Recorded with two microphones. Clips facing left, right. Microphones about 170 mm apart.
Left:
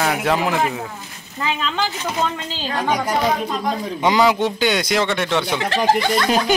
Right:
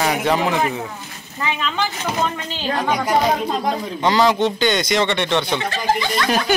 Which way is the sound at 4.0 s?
10° left (ahead or behind).